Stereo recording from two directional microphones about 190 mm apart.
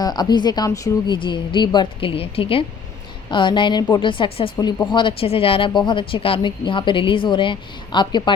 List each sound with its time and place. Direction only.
0.0 s speech: 20° left (ahead or behind)